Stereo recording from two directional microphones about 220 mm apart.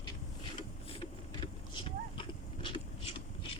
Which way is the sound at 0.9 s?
25° left (ahead or behind).